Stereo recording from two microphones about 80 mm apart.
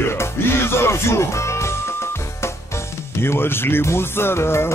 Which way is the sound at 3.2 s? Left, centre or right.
Left.